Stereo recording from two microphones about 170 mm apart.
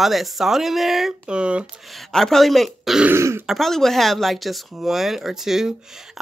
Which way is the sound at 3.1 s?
15° right (ahead or behind).